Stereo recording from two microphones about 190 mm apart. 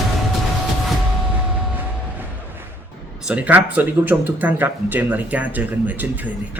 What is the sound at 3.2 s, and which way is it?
Speech, 5° right (ahead or behind).